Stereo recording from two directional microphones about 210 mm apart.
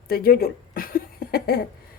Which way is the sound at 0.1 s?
45° left (ahead or behind).